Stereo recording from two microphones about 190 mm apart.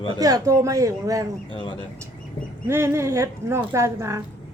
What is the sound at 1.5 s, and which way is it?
Speech, 25° left (ahead or behind).